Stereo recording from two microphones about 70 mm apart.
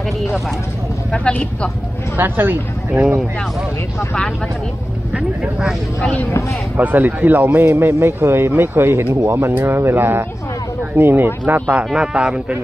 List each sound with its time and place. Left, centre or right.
1.1 s speech: centre
2.1 s speech: right
3.0 s a man's voice: centre
5.6 s speech: centre
6.8 s speech: right
11.7 s a man's voice: centre